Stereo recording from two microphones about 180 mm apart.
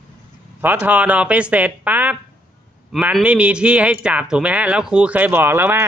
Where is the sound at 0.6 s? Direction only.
10° right (ahead or behind).